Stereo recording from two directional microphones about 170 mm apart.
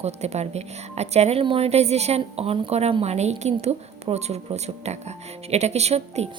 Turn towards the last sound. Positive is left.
turn(degrees=-40)  # may be behind; listen again after turning